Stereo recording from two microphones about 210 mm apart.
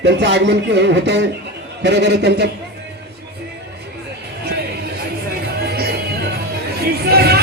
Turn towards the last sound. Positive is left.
turn(degrees=-50)  # may be behind; listen again after turning